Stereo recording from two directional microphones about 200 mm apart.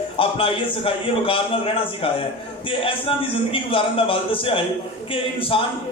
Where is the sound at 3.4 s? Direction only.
25° left (ahead or behind).